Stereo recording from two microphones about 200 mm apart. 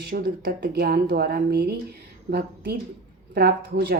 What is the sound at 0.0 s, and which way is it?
A woman's voice, 50° right (ahead or behind).